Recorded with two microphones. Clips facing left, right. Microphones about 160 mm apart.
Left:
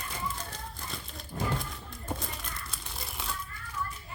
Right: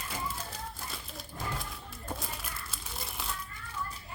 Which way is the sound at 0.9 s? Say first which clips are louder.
Left 3 dB; centre (ahead or behind).